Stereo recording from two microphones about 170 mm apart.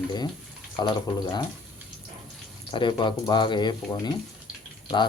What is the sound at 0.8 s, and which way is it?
Speech, 25° left (ahead or behind).